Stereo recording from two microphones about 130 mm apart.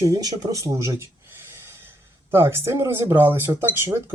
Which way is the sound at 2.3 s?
20° right (ahead or behind).